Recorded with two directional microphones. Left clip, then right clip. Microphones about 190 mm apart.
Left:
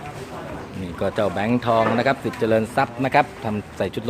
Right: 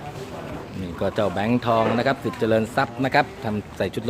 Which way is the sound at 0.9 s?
Centre (ahead or behind).